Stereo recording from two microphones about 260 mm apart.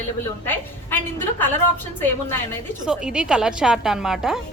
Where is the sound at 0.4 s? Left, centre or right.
Centre.